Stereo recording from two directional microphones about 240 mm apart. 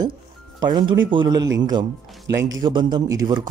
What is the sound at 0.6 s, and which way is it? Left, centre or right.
Speech, centre.